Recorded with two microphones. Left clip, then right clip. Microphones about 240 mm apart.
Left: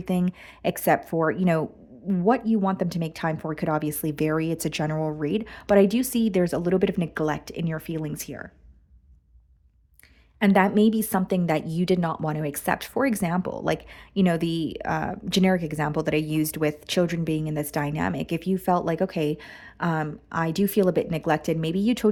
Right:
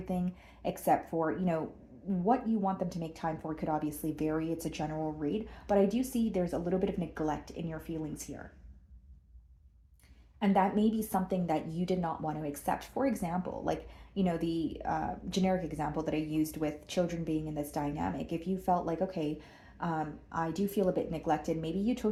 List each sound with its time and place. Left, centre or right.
0.0 s a woman's voice: left
10.4 s a woman's voice: left